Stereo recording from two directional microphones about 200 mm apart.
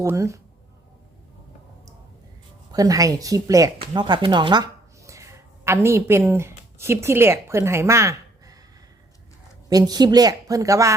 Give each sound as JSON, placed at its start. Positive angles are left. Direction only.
{"t": 0.0, "sound": "speech", "side_deg": -15}
{"t": 2.7, "sound": "speech", "side_deg": -20}
{"t": 9.6, "sound": "a woman's voice", "side_deg": -20}